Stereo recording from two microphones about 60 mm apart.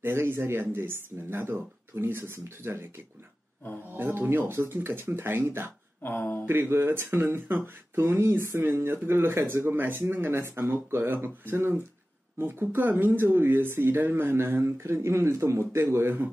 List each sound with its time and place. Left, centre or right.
0.0 s speech: right
3.9 s speech: right
6.0 s speech: left
6.4 s speech: right